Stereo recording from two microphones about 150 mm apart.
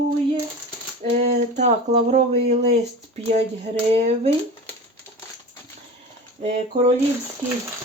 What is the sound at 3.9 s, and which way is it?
Speech, 45° right (ahead or behind).